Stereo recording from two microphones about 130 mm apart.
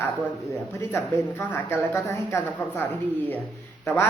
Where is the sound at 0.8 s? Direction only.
20° left (ahead or behind).